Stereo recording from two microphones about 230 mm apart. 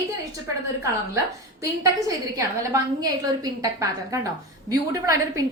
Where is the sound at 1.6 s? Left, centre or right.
Centre.